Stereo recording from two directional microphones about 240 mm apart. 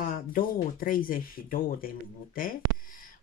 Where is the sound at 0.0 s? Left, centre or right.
Left.